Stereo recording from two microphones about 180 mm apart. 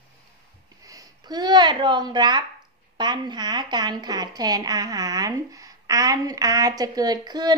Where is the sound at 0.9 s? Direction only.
20° right (ahead or behind).